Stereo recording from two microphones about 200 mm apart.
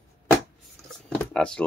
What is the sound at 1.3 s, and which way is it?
Speech, 5° left (ahead or behind).